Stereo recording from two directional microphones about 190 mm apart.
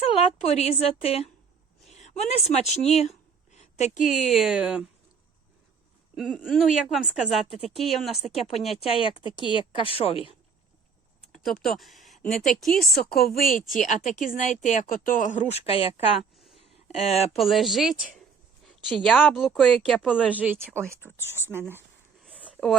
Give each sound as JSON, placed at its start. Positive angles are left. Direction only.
{"t": 0.0, "sound": "speech", "side_deg": 30}
{"t": 3.5, "sound": "a sound", "side_deg": 35}
{"t": 4.1, "sound": "speech", "side_deg": 0}
{"t": 6.1, "sound": "speech", "side_deg": 0}
{"t": 8.9, "sound": "a woman's voice", "side_deg": 25}
{"t": 11.3, "sound": "speech", "side_deg": 0}
{"t": 13.0, "sound": "speech", "side_deg": 55}
{"t": 16.6, "sound": "a sound", "side_deg": 35}
{"t": 17.3, "sound": "speech", "side_deg": 0}
{"t": 22.2, "sound": "a sound", "side_deg": 5}